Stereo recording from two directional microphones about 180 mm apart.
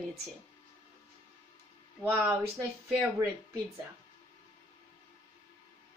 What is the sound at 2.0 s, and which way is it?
Speech, 15° right (ahead or behind).